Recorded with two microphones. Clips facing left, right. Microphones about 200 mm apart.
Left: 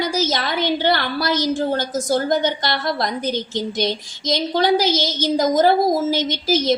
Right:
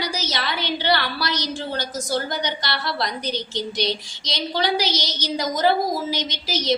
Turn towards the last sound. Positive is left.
turn(degrees=50)  # may be behind; listen again after turning